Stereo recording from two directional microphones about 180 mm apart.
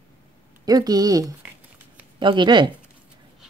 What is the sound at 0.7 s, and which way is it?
Speech, 20° right (ahead or behind).